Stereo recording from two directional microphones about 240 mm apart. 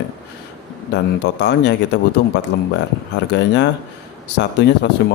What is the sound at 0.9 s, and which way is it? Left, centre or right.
A man's voice, left.